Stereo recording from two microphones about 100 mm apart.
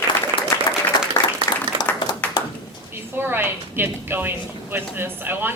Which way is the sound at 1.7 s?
55° right (ahead or behind).